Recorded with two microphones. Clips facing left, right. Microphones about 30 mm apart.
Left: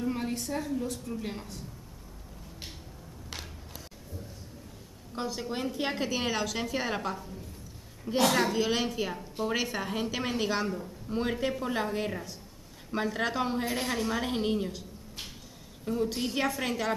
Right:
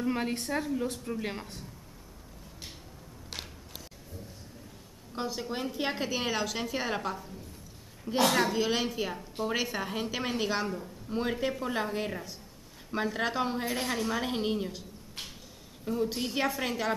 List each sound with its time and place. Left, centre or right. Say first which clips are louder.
0.0 s a woman's voice: right 1 dB; right
5.1 s a woman's voice: even; centre